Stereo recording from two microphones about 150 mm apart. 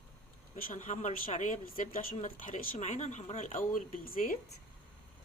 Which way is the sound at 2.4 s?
65° left (ahead or behind).